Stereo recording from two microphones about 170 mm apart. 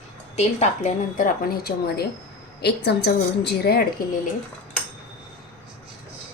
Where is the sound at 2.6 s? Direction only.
75° left (ahead or behind).